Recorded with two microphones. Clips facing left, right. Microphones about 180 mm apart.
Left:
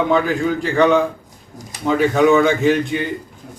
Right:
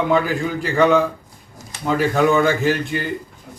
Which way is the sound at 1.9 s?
Centre (ahead or behind).